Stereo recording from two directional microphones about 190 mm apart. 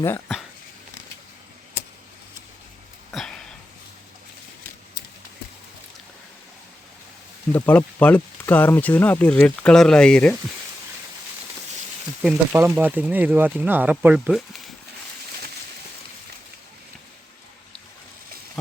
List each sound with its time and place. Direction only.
3.1 s a sound: centre (ahead or behind)
7.5 s speech: 10° left (ahead or behind)
12.2 s speech: 5° right (ahead or behind)